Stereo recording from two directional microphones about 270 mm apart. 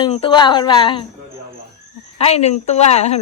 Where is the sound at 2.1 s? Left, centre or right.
Left.